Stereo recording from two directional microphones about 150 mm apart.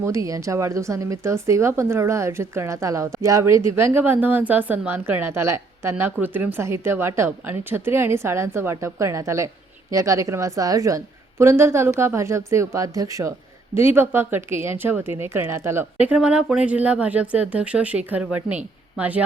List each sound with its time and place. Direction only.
0.0 s a woman's voice: 20° right (ahead or behind)